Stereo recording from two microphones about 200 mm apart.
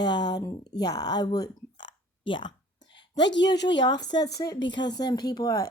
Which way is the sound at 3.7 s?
20° left (ahead or behind).